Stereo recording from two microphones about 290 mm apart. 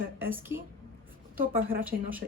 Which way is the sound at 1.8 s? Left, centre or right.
Centre.